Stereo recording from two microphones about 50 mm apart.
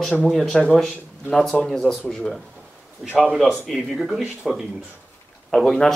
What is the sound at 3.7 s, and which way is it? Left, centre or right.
Speech, centre.